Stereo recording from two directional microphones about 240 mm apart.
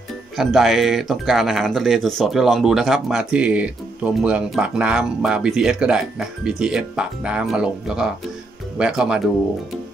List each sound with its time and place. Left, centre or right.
0.4 s speech: centre